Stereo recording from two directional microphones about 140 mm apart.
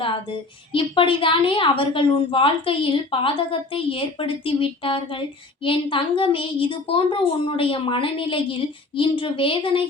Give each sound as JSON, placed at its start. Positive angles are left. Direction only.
{"t": 0.0, "sound": "a woman's voice", "side_deg": 40}